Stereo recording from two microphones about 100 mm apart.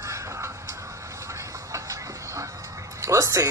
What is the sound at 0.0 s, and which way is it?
Music, 30° right (ahead or behind).